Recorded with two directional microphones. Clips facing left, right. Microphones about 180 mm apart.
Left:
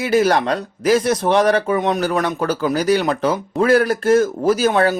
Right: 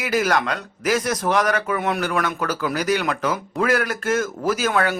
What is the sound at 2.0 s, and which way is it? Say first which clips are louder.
Speech: left 4 dB; 30° left (ahead or behind).